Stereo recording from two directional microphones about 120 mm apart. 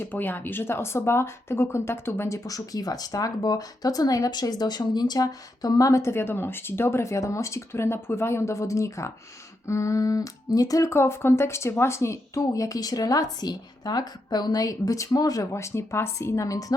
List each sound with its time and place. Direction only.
0.0 s speech: 15° left (ahead or behind)